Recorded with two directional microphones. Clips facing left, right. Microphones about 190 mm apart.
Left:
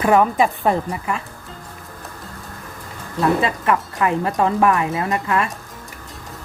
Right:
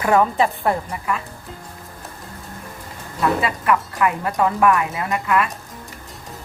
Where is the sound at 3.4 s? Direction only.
25° left (ahead or behind).